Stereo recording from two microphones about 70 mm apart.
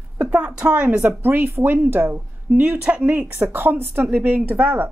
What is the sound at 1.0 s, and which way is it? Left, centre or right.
A woman's voice, right.